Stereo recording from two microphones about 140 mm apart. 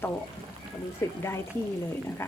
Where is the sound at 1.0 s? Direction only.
15° left (ahead or behind).